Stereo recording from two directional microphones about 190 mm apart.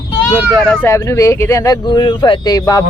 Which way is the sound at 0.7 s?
15° left (ahead or behind).